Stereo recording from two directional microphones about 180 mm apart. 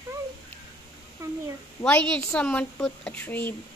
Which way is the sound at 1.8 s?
5° left (ahead or behind).